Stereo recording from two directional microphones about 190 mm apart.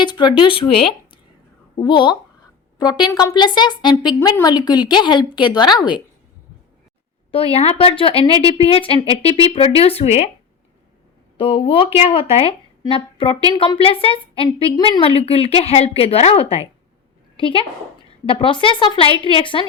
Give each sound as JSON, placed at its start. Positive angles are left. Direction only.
{"t": 0.0, "sound": "speech", "side_deg": 25}
{"t": 7.3, "sound": "speech", "side_deg": 30}
{"t": 11.3, "sound": "a woman's voice", "side_deg": 25}